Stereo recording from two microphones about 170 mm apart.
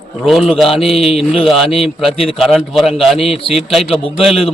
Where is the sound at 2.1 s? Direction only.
35° left (ahead or behind).